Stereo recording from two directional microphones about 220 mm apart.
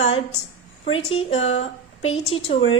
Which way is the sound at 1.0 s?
25° left (ahead or behind).